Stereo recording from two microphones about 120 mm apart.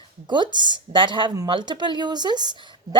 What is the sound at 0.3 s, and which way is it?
A woman's voice, 40° right (ahead or behind).